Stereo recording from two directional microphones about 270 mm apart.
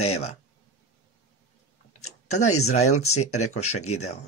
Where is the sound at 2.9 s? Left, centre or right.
Left.